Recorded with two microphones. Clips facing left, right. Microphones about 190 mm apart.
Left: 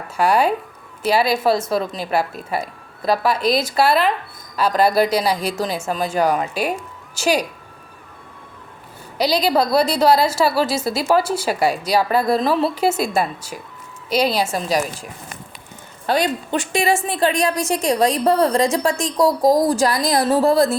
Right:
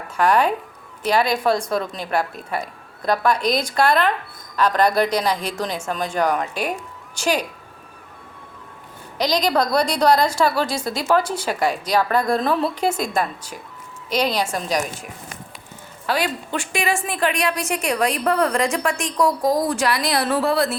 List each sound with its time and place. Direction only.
0.2 s a woman's voice: 10° left (ahead or behind)
9.1 s a woman's voice: 10° left (ahead or behind)
16.0 s a woman's voice: 20° left (ahead or behind)
19.1 s a woman's voice: 40° left (ahead or behind)